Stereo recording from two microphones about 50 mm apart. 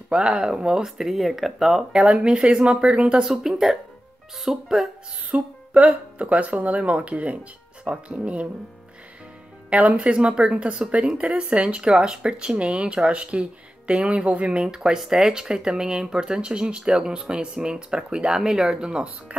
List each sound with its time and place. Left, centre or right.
0.1 s speech: centre
1.9 s speech: centre
3.3 s speech: centre
5.3 s speech: right
9.7 s speech: right